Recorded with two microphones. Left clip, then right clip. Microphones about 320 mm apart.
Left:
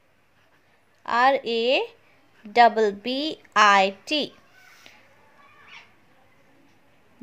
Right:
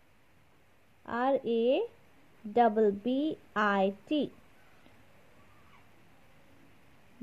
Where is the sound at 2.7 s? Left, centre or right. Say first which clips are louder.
Left 5 dB; centre.